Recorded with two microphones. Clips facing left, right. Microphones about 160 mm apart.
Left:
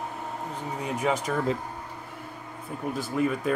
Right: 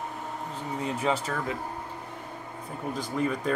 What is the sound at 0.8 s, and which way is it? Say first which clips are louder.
Speech: left 1 dB; 10° left (ahead or behind).